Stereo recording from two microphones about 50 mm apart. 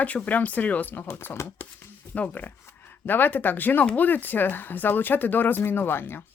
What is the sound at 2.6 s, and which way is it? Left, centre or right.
Speech, left.